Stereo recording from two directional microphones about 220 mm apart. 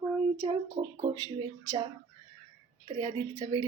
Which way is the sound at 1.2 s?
15° right (ahead or behind).